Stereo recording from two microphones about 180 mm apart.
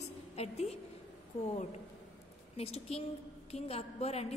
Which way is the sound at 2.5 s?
35° left (ahead or behind).